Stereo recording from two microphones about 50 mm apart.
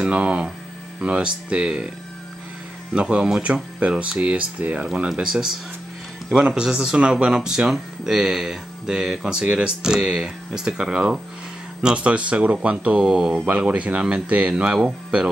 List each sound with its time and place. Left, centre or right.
0.1 s speech: right
2.9 s speech: right
12.9 s speech: centre
13.7 s speech: right
14.8 s speech: centre